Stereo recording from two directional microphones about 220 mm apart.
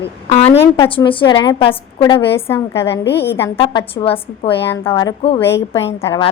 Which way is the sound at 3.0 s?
50° left (ahead or behind).